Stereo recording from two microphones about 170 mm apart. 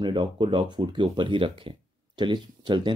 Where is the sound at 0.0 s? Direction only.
30° right (ahead or behind).